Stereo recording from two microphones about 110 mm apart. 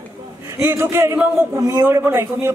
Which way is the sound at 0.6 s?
25° right (ahead or behind).